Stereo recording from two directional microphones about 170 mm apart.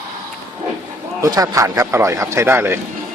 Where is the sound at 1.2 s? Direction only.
20° right (ahead or behind).